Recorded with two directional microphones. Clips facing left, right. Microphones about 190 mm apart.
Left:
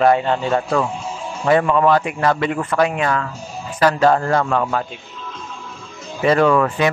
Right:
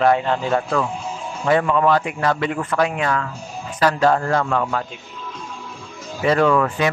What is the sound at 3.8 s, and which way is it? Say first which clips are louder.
A man's voice: left 2 dB; 35° left (ahead or behind).